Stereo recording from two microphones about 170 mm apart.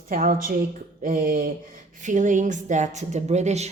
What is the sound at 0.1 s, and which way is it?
Speech, 55° right (ahead or behind).